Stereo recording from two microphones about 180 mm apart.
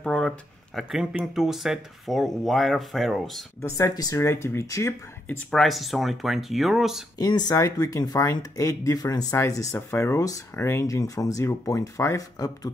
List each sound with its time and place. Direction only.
0.0 s a sound: 5° left (ahead or behind)
0.7 s speech: centre (ahead or behind)
3.6 s speech: 15° left (ahead or behind)
5.4 s speech: 5° left (ahead or behind)
7.2 s speech: 25° left (ahead or behind)